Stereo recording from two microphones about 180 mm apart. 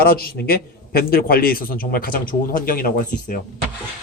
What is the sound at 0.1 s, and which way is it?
A man's voice, 55° left (ahead or behind).